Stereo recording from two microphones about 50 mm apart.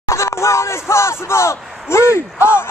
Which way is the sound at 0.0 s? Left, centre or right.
Left.